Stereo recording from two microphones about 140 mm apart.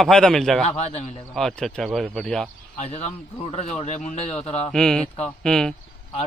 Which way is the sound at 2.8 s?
50° left (ahead or behind).